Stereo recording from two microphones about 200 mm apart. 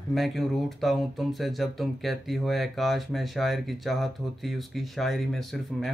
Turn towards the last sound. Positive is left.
turn(degrees=0)  # may be behind; listen again after turning